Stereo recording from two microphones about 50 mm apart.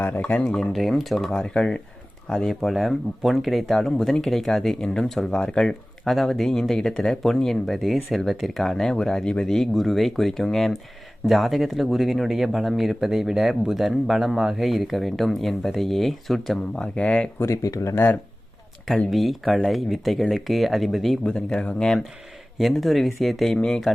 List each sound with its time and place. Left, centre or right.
0.2 s speech: left
0.5 s speech: centre
1.5 s speech: centre
2.4 s speech: centre
16.7 s speech: left
17.4 s speech: left
17.9 s speech: left
19.1 s speech: centre
21.2 s speech: centre
22.7 s speech: centre